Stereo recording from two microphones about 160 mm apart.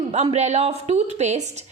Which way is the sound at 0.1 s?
45° right (ahead or behind).